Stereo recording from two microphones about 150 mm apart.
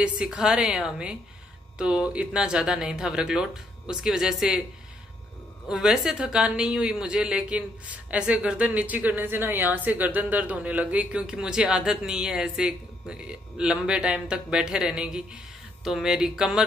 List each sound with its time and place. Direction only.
0.0 s speech: 5° right (ahead or behind)
5.7 s a woman's voice: 5° right (ahead or behind)